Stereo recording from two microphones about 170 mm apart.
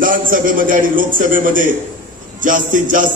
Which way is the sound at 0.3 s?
55° right (ahead or behind).